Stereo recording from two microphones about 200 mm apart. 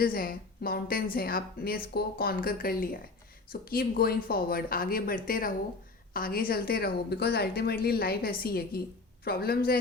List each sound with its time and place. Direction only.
0.0 s a woman's voice: 45° left (ahead or behind)